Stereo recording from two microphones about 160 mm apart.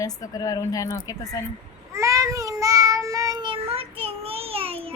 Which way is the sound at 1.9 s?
20° right (ahead or behind).